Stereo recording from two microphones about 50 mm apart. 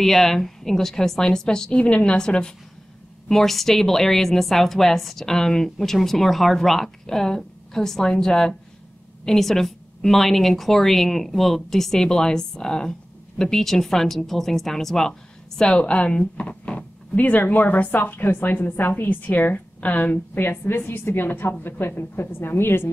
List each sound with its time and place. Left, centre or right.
0.0 s a woman's voice: centre
3.3 s a woman's voice: centre; by 20.2 s left
20.3 s a woman's voice: left